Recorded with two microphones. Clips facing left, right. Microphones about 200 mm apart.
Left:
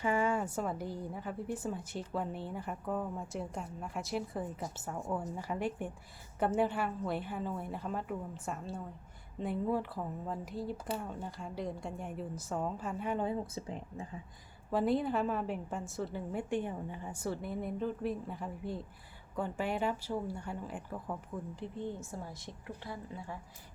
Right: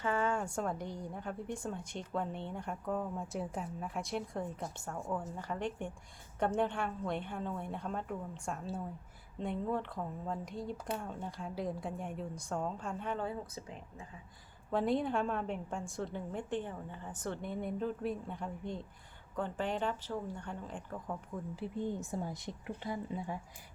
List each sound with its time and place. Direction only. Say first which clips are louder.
0.0 s a woman's voice: left 2 dB; 10° left (ahead or behind); by 14.0 s 30° left (ahead or behind)
14.7 s a woman's voice: left 1 dB; centre (ahead or behind)
21.5 s a woman's voice: right 2 dB; 5° right (ahead or behind)
22.0 s a woman's voice: right 5 dB; 20° right (ahead or behind)